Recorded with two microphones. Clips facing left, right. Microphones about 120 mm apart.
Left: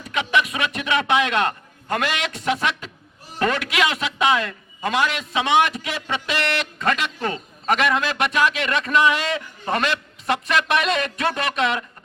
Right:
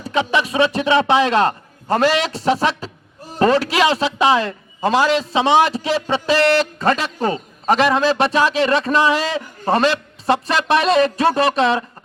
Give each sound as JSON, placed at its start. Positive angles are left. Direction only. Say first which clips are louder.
{"t": 0.0, "sound": "a man's voice", "louder": "right 3 dB", "side_deg": -30}